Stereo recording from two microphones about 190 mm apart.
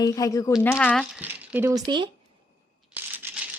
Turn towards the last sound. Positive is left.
turn(degrees=-10)  # may be behind; listen again after turning